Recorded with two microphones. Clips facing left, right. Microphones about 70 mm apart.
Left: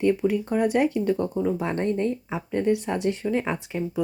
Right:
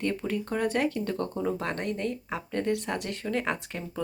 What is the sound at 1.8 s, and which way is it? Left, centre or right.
Speech, left.